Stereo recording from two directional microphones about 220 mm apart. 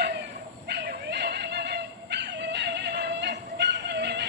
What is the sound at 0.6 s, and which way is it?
Dog, 50° right (ahead or behind).